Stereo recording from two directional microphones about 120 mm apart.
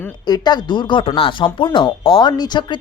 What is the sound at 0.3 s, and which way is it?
Speech, 35° left (ahead or behind).